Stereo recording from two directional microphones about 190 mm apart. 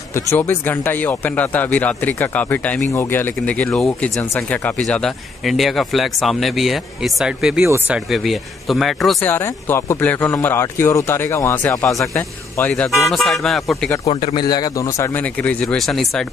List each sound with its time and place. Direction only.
0.1 s speech: 15° left (ahead or behind)
9.3 s speech: 10° left (ahead or behind)
14.0 s speech: 25° left (ahead or behind); by 16.3 s centre (ahead or behind)